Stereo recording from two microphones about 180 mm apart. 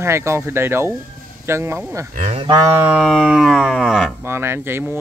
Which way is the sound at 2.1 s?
40° right (ahead or behind).